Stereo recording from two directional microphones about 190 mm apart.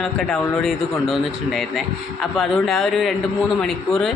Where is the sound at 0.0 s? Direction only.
Centre (ahead or behind).